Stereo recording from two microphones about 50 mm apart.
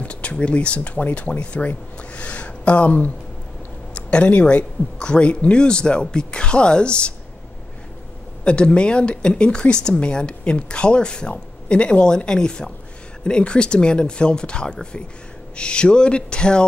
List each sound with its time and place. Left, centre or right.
0.0 s speech: left
2.1 s a sound: left
3.9 s speech: left
8.5 s speech: centre